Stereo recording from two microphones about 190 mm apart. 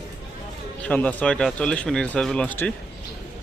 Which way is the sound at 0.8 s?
5° left (ahead or behind).